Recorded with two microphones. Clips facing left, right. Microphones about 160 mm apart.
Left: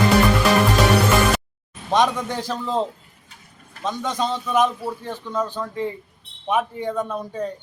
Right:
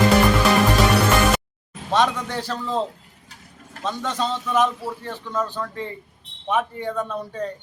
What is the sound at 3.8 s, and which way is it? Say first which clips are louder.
A man's voice: left 1 dB; 10° left (ahead or behind).